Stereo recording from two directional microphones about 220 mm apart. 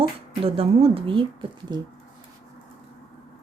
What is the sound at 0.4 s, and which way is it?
Speech, 25° right (ahead or behind).